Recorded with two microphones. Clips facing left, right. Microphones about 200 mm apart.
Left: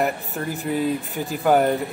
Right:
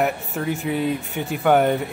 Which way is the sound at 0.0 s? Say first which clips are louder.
Right 1 dB; centre (ahead or behind).